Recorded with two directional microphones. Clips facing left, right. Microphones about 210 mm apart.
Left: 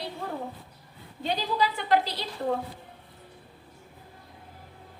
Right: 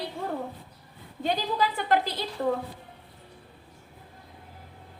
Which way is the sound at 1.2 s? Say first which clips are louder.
Right 1 dB; 50° right (ahead or behind).